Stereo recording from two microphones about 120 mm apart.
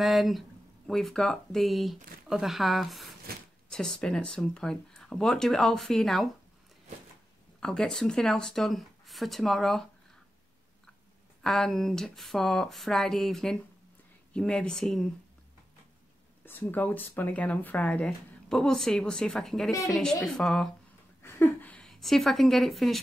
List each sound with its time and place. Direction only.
0.0 s speech: centre (ahead or behind)
7.6 s speech: 5° left (ahead or behind)
11.4 s speech: 5° left (ahead or behind)
16.4 s speech: 15° left (ahead or behind)
21.2 s a sound: 20° left (ahead or behind)
21.7 s a woman's voice: 5° left (ahead or behind)